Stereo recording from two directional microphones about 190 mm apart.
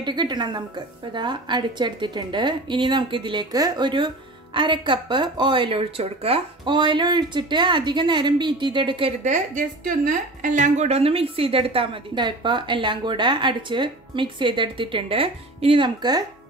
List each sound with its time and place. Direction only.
0.0 s a woman's voice: 25° right (ahead or behind)
9.2 s a woman's voice: 40° right (ahead or behind); by 16.3 s 20° right (ahead or behind)